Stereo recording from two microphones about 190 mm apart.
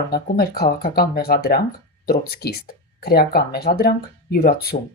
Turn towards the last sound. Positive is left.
turn(degrees=50)  # may be behind; listen again after turning